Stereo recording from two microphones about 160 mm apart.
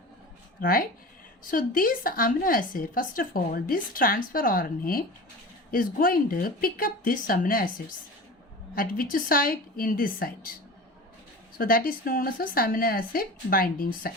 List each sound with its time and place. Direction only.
0.6 s a woman's voice: 65° left (ahead or behind)
8.7 s a woman's voice: 60° left (ahead or behind)
11.5 s a woman's voice: 65° left (ahead or behind)